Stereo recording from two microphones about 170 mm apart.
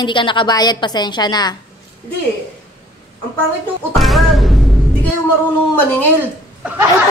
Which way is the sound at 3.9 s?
Centre (ahead or behind).